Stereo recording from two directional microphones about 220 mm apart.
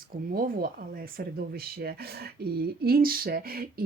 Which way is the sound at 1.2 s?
45° right (ahead or behind).